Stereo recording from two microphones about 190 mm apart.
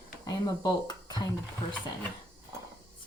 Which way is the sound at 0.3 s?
20° left (ahead or behind).